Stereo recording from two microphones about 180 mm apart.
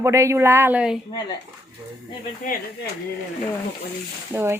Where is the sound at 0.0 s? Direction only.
15° right (ahead or behind).